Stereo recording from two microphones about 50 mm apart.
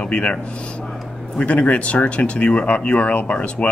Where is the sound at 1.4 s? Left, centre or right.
Left.